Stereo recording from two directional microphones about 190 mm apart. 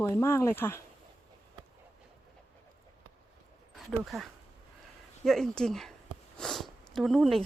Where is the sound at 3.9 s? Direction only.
Centre (ahead or behind).